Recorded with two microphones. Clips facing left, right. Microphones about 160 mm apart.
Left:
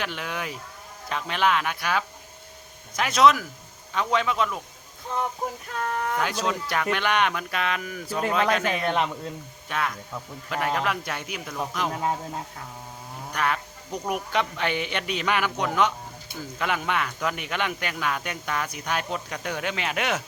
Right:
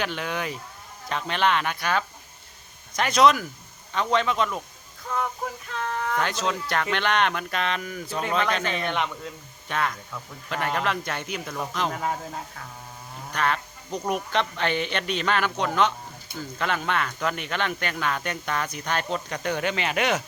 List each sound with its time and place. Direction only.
0.0 s speech: centre (ahead or behind)
5.6 s speech: 45° left (ahead or behind)
6.1 s speech: 5° left (ahead or behind)
8.9 s speech: 35° left (ahead or behind)
9.6 s speech: 5° left (ahead or behind)
13.3 s speech: 10° left (ahead or behind)